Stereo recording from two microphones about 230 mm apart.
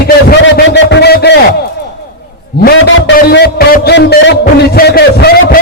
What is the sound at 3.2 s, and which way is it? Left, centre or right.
Music, left.